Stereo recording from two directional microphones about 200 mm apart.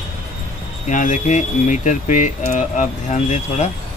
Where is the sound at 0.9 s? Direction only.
40° left (ahead or behind).